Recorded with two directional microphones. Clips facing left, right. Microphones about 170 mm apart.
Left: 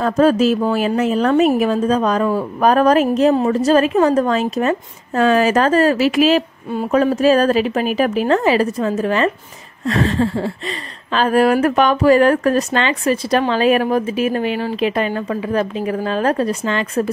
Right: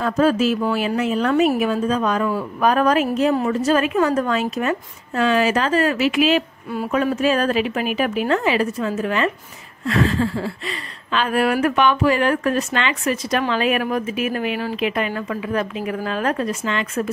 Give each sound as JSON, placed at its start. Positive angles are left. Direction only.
{"t": 0.0, "sound": "speech", "side_deg": 40}